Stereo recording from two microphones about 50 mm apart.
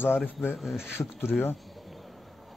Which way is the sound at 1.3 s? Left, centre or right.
Left.